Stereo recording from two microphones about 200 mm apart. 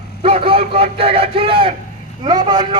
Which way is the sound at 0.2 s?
25° right (ahead or behind).